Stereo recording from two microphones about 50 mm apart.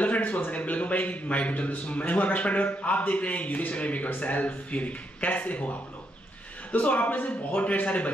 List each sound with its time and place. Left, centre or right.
0.0 s a man's voice: left
6.7 s a man's voice: left